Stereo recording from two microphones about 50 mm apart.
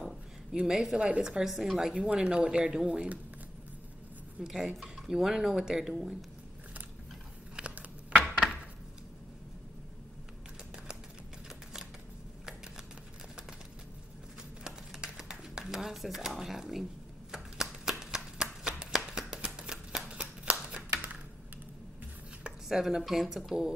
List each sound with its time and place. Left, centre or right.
0.7 s speech: centre
1.4 s speech: centre
2.0 s speech: right
4.4 s speech: centre
7.6 s a sound: centre
12.4 s shuffling cards: centre
14.6 s a sound: centre
17.3 s shuffling cards: centre
20.2 s a sound: right
22.7 s speech: centre